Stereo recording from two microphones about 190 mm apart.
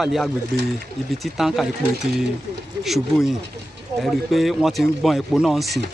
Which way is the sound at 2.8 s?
Centre (ahead or behind).